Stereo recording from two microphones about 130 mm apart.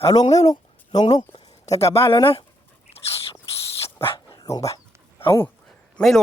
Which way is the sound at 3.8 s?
45° left (ahead or behind).